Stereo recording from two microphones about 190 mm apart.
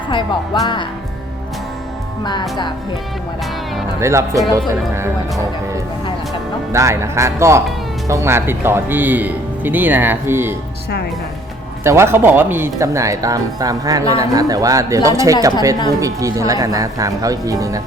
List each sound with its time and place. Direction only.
0.6 s speech: 25° left (ahead or behind)
4.0 s speech: 15° right (ahead or behind)
6.7 s speech: 15° right (ahead or behind)
11.8 s speech: 15° right (ahead or behind)